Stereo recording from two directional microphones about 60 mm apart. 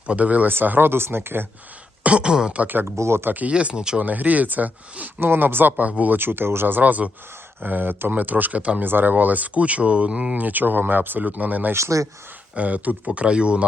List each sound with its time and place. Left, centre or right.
0.1 s speech: right
2.0 s speech: centre
2.6 s speech: right
2.9 s speech: right
3.5 s speech: centre
4.0 s speech: right
5.2 s speech: right
8.8 s speech: right; by 10.4 s centre
10.4 s speech: right
11.7 s speech: right
12.5 s speech: right